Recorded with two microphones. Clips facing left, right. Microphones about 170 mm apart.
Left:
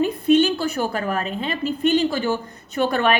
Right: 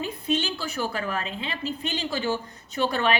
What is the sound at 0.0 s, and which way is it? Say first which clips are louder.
A woman's voice: left 11 dB; 55° left (ahead or behind).